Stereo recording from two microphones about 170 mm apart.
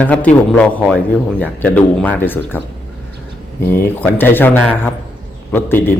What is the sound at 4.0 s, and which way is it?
A man's voice, 10° left (ahead or behind).